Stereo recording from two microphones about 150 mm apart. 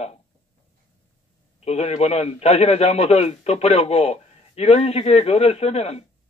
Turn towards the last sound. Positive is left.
turn(degrees=45)  # may be behind; listen again after turning